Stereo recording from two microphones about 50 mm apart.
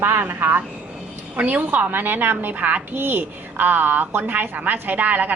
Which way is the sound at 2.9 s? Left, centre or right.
Right.